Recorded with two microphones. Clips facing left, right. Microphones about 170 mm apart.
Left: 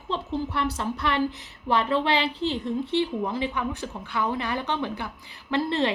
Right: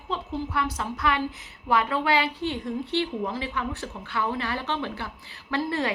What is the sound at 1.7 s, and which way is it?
A woman's voice, 30° left (ahead or behind).